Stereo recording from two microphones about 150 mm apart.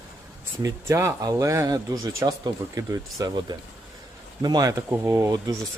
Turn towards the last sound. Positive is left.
turn(degrees=-20)  # may be behind; listen again after turning